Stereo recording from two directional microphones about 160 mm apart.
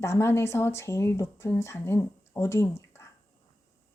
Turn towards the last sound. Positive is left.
turn(degrees=15)  # may be behind; listen again after turning